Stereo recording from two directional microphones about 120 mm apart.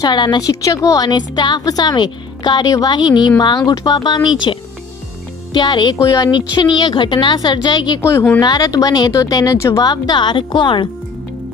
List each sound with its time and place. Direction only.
0.0 s a woman's voice: 40° left (ahead or behind)
8.0 s speech: 20° left (ahead or behind)
8.4 s a woman's voice: 35° left (ahead or behind)